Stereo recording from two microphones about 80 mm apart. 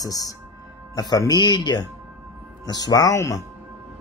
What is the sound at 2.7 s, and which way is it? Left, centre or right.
Speech, left.